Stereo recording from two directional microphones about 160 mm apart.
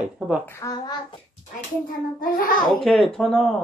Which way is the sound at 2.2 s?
60° left (ahead or behind).